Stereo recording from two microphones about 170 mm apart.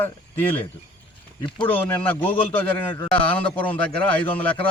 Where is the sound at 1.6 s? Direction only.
10° left (ahead or behind).